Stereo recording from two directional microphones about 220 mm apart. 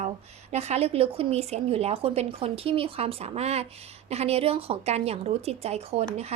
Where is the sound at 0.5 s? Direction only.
30° right (ahead or behind).